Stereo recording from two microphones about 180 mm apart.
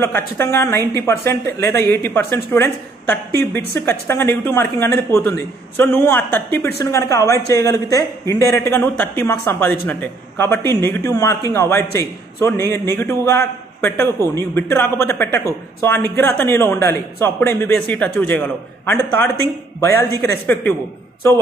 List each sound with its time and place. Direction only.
0.0 s a man's voice: 15° left (ahead or behind)